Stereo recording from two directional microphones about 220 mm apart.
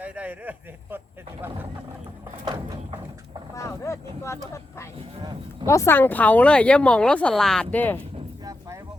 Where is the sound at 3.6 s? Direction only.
15° left (ahead or behind).